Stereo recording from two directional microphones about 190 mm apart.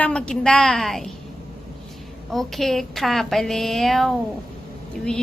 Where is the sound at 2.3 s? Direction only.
Centre (ahead or behind).